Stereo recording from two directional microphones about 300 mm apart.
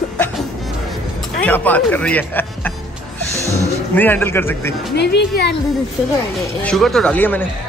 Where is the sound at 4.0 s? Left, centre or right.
Centre.